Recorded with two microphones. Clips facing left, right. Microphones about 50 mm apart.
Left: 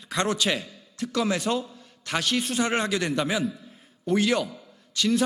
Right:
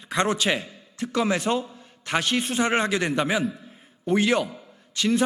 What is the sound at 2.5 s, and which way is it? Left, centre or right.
Speech, right.